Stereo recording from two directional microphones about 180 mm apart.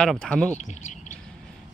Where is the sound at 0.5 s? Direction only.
40° left (ahead or behind).